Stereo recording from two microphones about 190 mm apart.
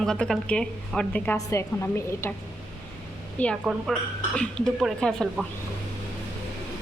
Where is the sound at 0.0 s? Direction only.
5° left (ahead or behind).